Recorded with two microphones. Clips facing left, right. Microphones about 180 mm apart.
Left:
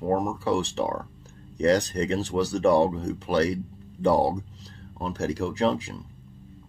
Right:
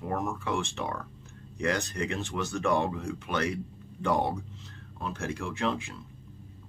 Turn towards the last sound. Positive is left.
turn(degrees=40)  # may be behind; listen again after turning